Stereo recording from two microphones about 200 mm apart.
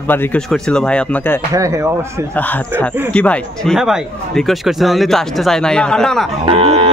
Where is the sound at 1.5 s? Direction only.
15° right (ahead or behind).